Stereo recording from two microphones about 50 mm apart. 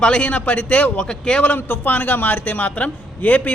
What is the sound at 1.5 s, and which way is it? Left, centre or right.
A man's voice, left.